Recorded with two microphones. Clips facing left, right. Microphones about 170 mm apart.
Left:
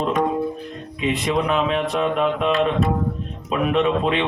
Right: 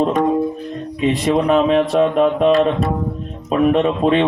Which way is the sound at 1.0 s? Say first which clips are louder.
Right 5 dB; 40° right (ahead or behind).